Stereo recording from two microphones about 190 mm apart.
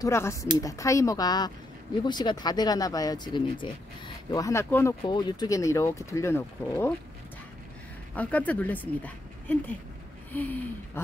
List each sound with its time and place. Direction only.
0.0 s speech: 15° left (ahead or behind)
8.2 s speech: 10° left (ahead or behind)